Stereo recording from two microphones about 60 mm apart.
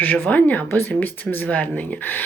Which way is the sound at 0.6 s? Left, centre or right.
Left.